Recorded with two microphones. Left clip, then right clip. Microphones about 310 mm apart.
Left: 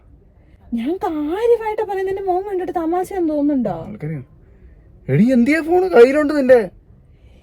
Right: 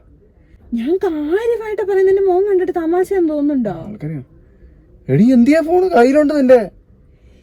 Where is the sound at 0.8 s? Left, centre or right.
Left.